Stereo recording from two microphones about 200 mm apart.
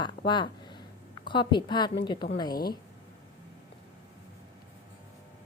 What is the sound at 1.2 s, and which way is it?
A woman's voice, 25° left (ahead or behind).